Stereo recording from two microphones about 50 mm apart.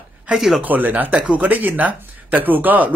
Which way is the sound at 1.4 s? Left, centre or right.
Right.